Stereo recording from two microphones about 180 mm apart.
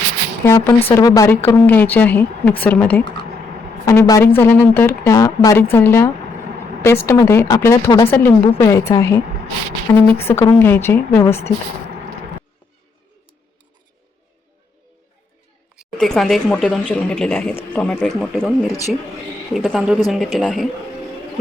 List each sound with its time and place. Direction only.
0.4 s speech: 15° left (ahead or behind)
15.7 s speech: centre (ahead or behind)
19.5 s speech: centre (ahead or behind)